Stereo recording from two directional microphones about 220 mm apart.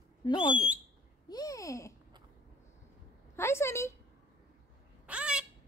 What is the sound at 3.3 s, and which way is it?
Speech, 10° left (ahead or behind).